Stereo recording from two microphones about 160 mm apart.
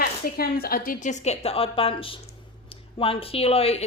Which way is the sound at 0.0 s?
70° left (ahead or behind).